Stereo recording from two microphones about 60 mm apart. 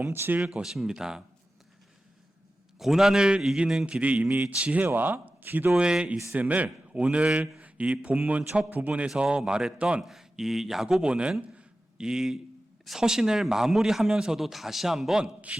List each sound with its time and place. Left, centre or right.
0.0 s a man's voice: right
0.3 s a man's voice: right
0.6 s speech: centre
2.7 s a man's voice: centre; by 5.7 s right
5.7 s a man's voice: centre
9.1 s speech: centre
10.0 s a man's voice: centre
15.5 s a man's voice: right